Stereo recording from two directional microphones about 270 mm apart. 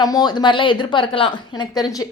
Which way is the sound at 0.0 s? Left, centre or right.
Centre.